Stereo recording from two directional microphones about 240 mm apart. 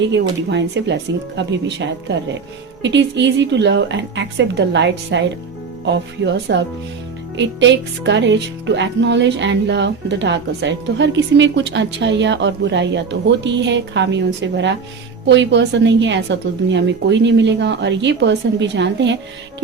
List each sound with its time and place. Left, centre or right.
0.0 s speech: right